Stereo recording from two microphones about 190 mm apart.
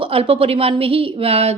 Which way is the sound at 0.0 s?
30° right (ahead or behind).